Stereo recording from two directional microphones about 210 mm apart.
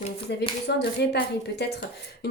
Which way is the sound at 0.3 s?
55° left (ahead or behind).